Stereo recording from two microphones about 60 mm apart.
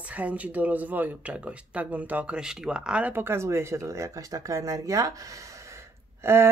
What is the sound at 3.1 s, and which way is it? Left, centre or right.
Speech, right.